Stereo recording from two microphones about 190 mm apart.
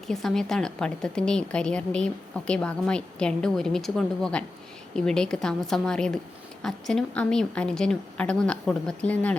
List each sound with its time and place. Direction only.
0.1 s a woman's voice: centre (ahead or behind)